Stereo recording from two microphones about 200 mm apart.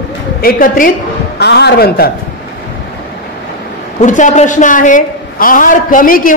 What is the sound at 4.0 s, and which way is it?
A woman's voice, 40° left (ahead or behind).